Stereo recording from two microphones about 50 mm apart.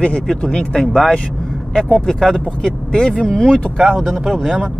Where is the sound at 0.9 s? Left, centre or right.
Centre.